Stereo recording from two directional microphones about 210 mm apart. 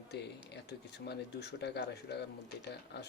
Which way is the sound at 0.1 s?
55° left (ahead or behind).